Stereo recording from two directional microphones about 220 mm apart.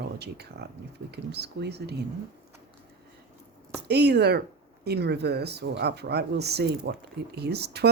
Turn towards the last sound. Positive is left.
turn(degrees=-50)  # may be behind; listen again after turning